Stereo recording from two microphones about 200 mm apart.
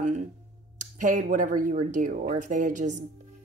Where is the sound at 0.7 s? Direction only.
40° right (ahead or behind).